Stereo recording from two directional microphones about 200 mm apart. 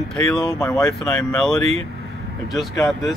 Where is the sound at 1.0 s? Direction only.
5° left (ahead or behind).